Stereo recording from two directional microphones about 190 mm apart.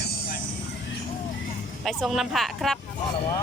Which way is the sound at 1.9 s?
Centre (ahead or behind).